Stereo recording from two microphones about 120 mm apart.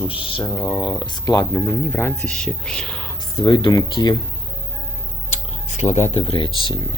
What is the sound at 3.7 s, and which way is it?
Speech, 30° left (ahead or behind).